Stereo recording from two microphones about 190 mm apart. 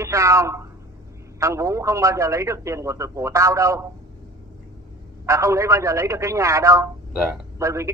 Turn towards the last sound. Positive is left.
turn(degrees=-15)  # may be behind; listen again after turning